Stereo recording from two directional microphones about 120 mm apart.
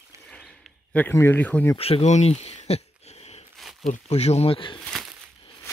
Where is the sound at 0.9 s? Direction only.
20° left (ahead or behind).